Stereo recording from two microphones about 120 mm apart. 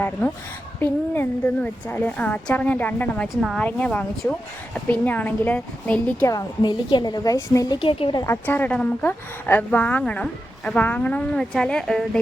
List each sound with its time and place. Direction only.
0.8 s a woman's voice: 20° left (ahead or behind)
6.2 s a woman's voice: 35° left (ahead or behind)
7.8 s a woman's voice: 50° left (ahead or behind)
8.4 s a woman's voice: 15° left (ahead or behind)